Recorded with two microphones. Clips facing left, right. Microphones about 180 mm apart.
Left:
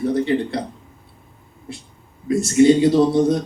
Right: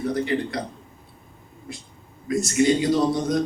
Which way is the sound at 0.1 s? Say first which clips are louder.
Left 3 dB; 30° left (ahead or behind).